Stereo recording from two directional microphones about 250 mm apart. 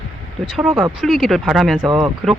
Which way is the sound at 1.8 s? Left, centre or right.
Centre.